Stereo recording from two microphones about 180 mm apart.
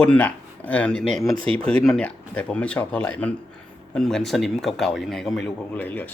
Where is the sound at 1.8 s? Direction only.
5° left (ahead or behind).